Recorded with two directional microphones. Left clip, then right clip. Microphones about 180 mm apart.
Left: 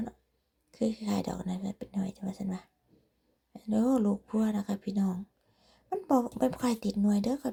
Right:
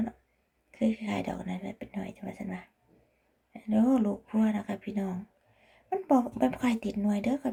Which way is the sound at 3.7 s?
35° left (ahead or behind).